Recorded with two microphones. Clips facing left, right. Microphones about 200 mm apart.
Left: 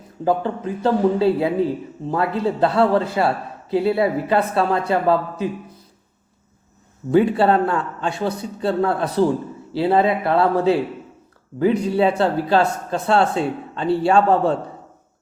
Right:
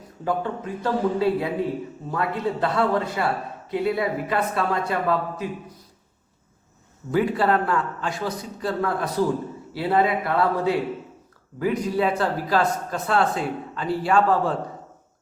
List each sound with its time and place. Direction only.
0.3 s speech: 30° left (ahead or behind)
7.1 s speech: 25° left (ahead or behind)